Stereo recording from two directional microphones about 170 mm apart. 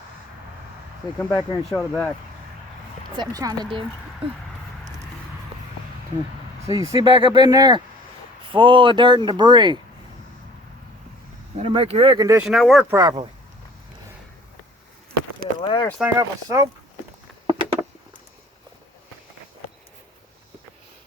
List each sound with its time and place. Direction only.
1.3 s speech: 25° left (ahead or behind)
1.7 s speech: centre (ahead or behind)
3.2 s speech: 25° right (ahead or behind)
6.7 s speech: 20° right (ahead or behind)
6.9 s speech: 30° right (ahead or behind)
11.5 s speech: 35° right (ahead or behind)
12.4 s speech: centre (ahead or behind)
12.9 s speech: 25° right (ahead or behind)
15.6 s speech: 30° left (ahead or behind)
16.0 s speech: 10° right (ahead or behind)
17.4 s a sound: 30° right (ahead or behind)